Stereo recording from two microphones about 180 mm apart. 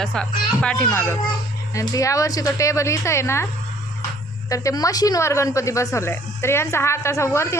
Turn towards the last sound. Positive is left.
turn(degrees=15)  # may be behind; listen again after turning